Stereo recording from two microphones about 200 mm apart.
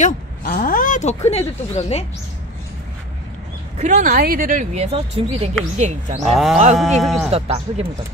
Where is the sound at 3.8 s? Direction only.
40° right (ahead or behind).